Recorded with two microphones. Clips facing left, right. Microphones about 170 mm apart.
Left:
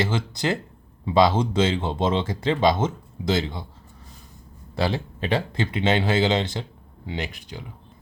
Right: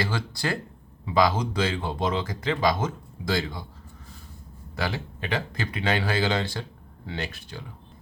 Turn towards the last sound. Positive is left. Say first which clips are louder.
# left 2 dB
turn(degrees=15)  # may be behind; listen again after turning